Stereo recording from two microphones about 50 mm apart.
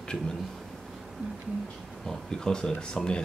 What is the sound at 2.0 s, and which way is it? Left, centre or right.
Speech, centre.